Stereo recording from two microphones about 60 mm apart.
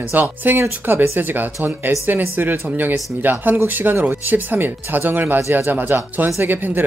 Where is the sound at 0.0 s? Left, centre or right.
Right.